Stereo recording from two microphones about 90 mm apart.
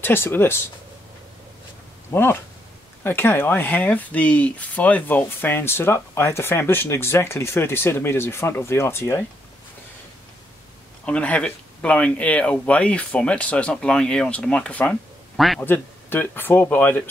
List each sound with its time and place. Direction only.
0.0 s speech: 25° left (ahead or behind)
2.1 s speech: 25° left (ahead or behind)
11.1 s speech: 15° left (ahead or behind)
15.3 s a man's voice: centre (ahead or behind)
15.6 s speech: 20° left (ahead or behind)